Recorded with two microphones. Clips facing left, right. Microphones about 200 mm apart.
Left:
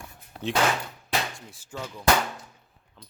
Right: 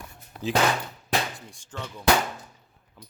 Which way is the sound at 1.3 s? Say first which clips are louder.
Left 1 dB; 5° left (ahead or behind).